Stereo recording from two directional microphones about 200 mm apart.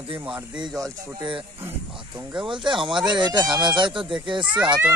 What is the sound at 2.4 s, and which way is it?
Speech, 25° right (ahead or behind).